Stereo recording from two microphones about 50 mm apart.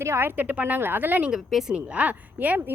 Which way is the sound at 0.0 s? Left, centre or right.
Right.